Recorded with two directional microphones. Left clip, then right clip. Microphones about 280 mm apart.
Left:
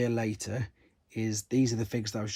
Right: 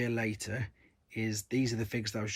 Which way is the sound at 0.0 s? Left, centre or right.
Centre.